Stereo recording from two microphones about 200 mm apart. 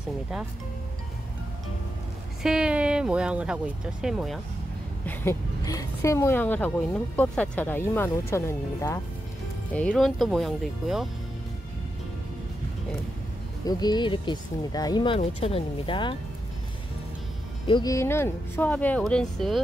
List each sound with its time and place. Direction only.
2.4 s speech: 5° right (ahead or behind)
5.0 s a woman's voice: 10° left (ahead or behind)
13.7 s speech: 20° left (ahead or behind)
17.6 s a woman's voice: 20° left (ahead or behind); by 19.6 s centre (ahead or behind)